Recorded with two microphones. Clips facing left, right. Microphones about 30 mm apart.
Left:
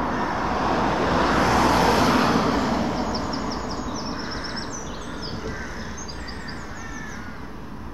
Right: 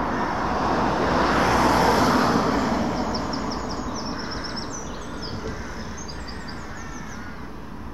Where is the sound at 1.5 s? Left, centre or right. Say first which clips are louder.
Even; left.